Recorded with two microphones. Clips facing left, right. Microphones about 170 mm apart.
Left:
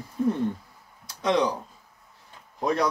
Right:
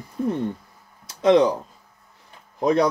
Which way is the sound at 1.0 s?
20° right (ahead or behind).